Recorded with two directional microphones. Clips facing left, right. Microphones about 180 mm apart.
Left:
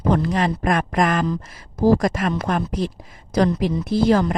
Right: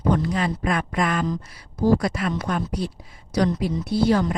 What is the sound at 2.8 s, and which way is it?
A woman's voice, 90° left.